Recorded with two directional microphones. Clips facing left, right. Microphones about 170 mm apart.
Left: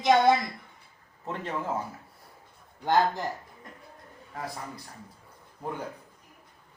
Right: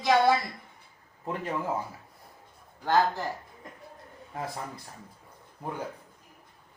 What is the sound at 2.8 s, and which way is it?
Speech, 15° left (ahead or behind).